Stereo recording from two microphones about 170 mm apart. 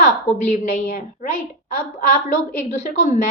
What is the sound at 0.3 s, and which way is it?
A woman's voice, 45° left (ahead or behind).